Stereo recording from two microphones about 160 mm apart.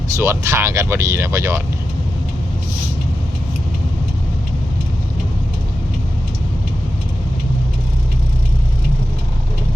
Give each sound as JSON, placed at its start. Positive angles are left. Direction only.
{"t": 0.2, "sound": "speech", "side_deg": -15}